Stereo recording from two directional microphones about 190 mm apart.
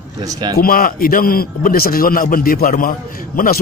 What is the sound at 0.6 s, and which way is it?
A man's voice, 50° left (ahead or behind).